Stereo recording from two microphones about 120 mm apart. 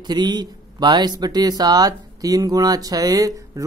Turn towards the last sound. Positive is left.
turn(degrees=-30)  # may be behind; listen again after turning